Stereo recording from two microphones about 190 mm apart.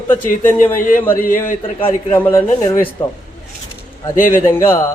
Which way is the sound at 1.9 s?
10° left (ahead or behind).